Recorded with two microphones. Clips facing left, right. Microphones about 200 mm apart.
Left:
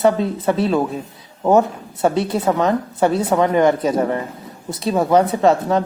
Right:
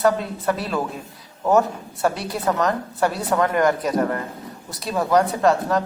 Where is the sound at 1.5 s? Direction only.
20° left (ahead or behind).